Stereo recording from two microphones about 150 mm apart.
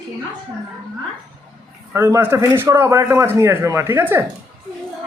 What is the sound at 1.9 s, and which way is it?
A woman's voice, 15° right (ahead or behind).